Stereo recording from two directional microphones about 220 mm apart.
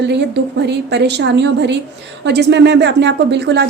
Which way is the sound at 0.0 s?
50° right (ahead or behind).